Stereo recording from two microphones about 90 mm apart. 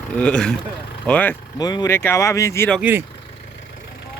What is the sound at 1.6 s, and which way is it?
Speech, 45° left (ahead or behind).